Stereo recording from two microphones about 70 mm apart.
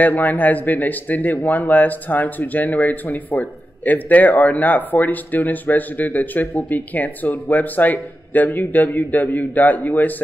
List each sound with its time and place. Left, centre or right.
0.0 s speech: left